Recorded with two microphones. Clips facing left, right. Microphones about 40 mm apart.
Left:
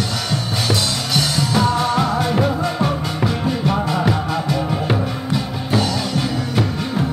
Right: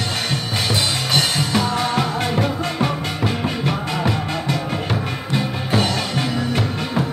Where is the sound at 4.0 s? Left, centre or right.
Centre.